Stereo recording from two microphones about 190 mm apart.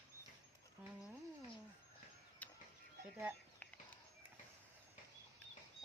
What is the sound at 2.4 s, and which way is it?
Fowl, 10° left (ahead or behind).